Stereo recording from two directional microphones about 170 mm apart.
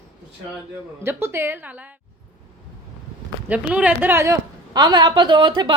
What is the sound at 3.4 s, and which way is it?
A woman's voice, 10° right (ahead or behind).